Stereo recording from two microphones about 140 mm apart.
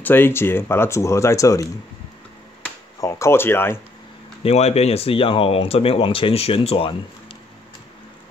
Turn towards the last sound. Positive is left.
turn(degrees=40)  # may be behind; listen again after turning